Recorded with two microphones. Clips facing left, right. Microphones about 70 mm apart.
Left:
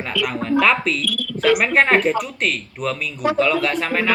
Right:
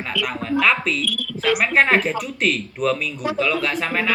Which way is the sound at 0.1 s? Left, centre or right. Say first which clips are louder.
Left 3 dB; left.